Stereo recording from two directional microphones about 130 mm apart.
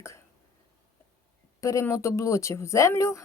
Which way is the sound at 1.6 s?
25° left (ahead or behind).